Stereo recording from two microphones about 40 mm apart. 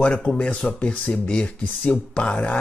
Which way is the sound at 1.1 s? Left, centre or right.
Left.